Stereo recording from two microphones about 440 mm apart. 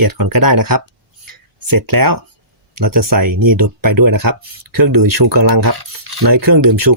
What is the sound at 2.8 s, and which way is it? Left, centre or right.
Speech, right.